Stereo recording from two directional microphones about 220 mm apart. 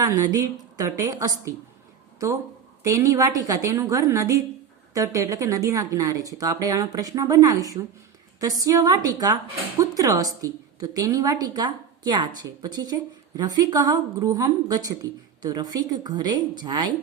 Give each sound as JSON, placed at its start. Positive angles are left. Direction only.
{"t": 0.3, "sound": "a woman's voice", "side_deg": -15}